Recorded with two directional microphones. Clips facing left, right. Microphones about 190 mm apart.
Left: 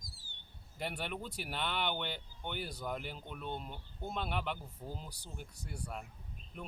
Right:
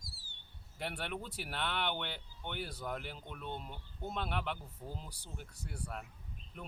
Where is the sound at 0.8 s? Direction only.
Centre (ahead or behind).